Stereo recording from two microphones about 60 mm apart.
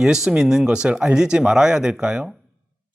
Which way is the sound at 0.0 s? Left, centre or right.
Centre.